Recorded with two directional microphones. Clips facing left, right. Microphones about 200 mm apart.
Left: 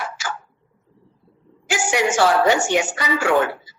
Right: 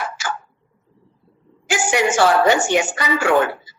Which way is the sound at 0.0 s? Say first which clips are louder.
Right 2 dB; 55° right (ahead or behind).